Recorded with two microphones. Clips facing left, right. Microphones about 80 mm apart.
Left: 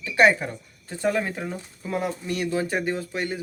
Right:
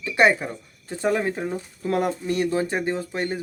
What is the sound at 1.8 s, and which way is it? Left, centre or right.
Speech, right.